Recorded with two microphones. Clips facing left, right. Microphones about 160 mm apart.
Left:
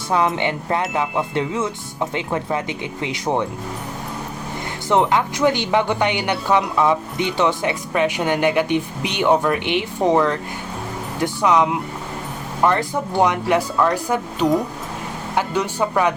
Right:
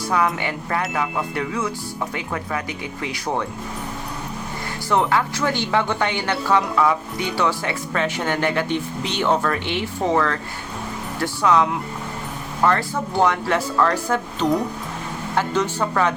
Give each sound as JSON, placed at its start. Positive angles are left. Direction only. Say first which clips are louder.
{"t": 0.1, "sound": "speech", "louder": "left 3 dB", "side_deg": 25}
{"t": 4.9, "sound": "speech", "louder": "left 2 dB", "side_deg": 20}